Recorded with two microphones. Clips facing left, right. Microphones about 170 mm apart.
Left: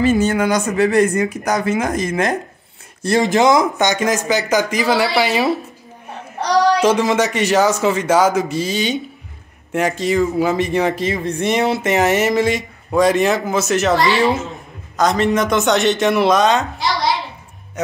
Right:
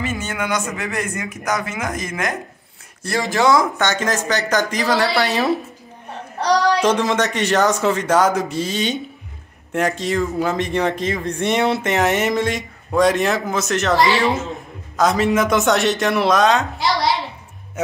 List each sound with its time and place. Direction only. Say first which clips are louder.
0.0 s speech: left 10 dB; 35° left (ahead or behind); by 5.5 s centre (ahead or behind)
6.8 s speech: left 3 dB; 5° left (ahead or behind)